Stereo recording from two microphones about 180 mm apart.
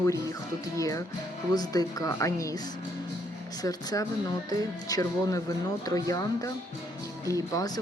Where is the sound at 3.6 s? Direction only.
20° left (ahead or behind).